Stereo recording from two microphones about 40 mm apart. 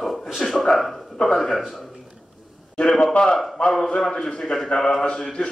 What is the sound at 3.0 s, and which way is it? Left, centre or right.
A man's voice, left.